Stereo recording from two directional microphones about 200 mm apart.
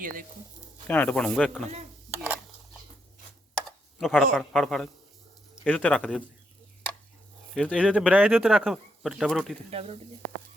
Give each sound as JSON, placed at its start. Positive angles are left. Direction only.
{"t": 0.0, "sound": "speech", "side_deg": -45}
{"t": 0.9, "sound": "speech", "side_deg": 5}
{"t": 4.0, "sound": "speech", "side_deg": 0}
{"t": 7.5, "sound": "speech", "side_deg": 0}
{"t": 9.6, "sound": "speech", "side_deg": -30}